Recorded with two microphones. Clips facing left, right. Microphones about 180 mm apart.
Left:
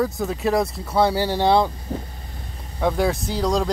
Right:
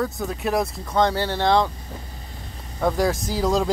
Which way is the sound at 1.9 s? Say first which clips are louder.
Left 9 dB; 40° left (ahead or behind).